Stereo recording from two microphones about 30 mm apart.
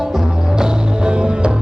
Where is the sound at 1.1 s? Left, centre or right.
Right.